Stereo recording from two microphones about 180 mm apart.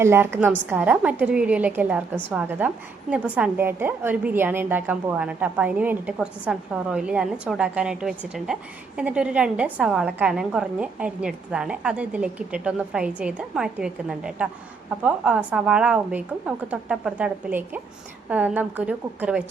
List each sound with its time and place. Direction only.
0.0 s a woman's voice: 15° right (ahead or behind)